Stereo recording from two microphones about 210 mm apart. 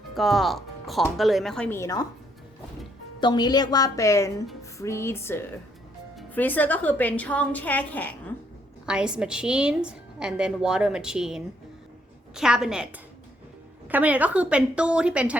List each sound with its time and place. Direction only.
0.1 s a woman's voice: centre (ahead or behind)
3.2 s a woman's voice: 20° left (ahead or behind)
8.9 s a woman's voice: 5° right (ahead or behind)